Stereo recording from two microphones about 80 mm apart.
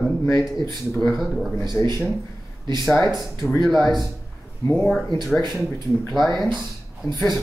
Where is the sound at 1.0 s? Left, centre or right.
Centre.